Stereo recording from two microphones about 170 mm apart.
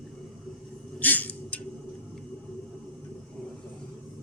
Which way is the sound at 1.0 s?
10° left (ahead or behind).